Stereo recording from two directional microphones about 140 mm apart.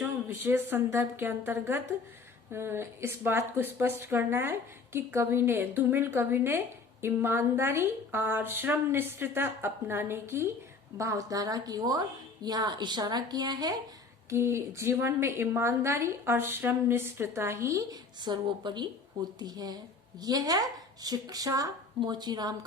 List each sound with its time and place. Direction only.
0.0 s a woman's voice: 15° right (ahead or behind)
14.3 s a woman's voice: 20° right (ahead or behind)